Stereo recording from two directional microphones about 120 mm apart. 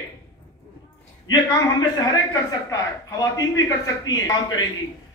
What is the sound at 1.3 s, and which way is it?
A man's voice, 35° left (ahead or behind).